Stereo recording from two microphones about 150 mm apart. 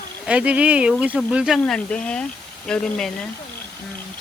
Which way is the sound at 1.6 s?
5° left (ahead or behind).